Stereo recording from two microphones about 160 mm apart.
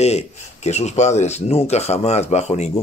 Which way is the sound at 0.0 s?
45° left (ahead or behind).